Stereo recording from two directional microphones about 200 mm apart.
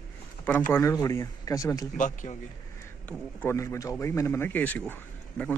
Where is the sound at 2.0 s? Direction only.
40° left (ahead or behind).